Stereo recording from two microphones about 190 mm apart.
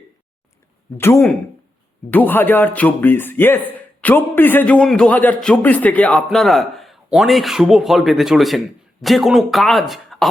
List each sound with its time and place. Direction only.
0.9 s a man's voice: 15° left (ahead or behind)